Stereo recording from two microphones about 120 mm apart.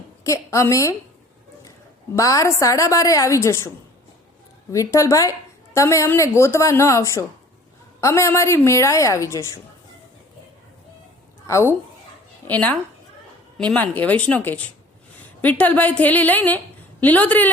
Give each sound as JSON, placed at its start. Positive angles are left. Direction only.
{"t": 0.3, "sound": "a woman's voice", "side_deg": 25}
{"t": 2.1, "sound": "a woman's voice", "side_deg": 25}
{"t": 4.7, "sound": "a woman's voice", "side_deg": 25}
{"t": 11.4, "sound": "a woman's voice", "side_deg": 25}
{"t": 12.5, "sound": "a woman's voice", "side_deg": 10}